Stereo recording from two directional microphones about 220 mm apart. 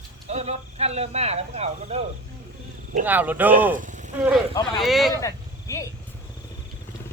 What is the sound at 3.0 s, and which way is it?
Speech, 10° right (ahead or behind).